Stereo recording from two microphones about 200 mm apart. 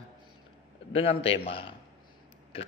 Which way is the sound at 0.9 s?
25° left (ahead or behind).